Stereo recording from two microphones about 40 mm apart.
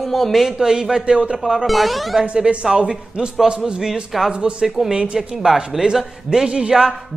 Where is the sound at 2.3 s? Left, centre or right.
Right.